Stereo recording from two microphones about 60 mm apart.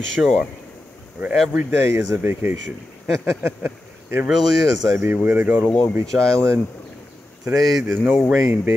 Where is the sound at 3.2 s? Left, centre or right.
Right.